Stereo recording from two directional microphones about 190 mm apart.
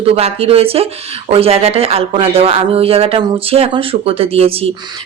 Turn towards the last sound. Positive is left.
turn(degrees=-30)  # may be behind; listen again after turning